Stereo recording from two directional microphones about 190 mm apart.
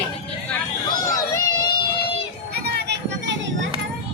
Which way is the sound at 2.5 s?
60° right (ahead or behind).